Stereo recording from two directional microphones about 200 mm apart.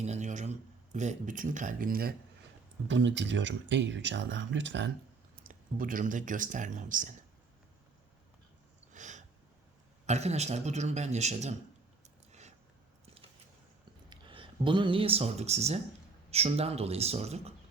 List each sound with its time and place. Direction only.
0.0 s a man's voice: 35° right (ahead or behind)
2.8 s speech: 65° right (ahead or behind)
5.4 s speech: 45° right (ahead or behind)
8.9 s a sound: 40° right (ahead or behind)
10.1 s a man's voice: 35° right (ahead or behind)
12.0 s a sound: 35° right (ahead or behind)
14.1 s a man's voice: 25° right (ahead or behind)